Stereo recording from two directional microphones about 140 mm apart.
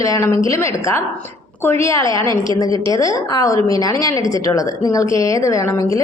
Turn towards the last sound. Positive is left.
turn(degrees=20)  # may be behind; listen again after turning